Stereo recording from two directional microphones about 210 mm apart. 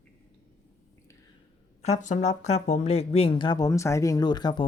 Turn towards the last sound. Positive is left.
turn(degrees=20)  # may be behind; listen again after turning